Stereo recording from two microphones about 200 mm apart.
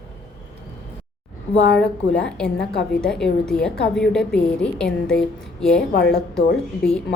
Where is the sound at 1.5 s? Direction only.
65° left (ahead or behind).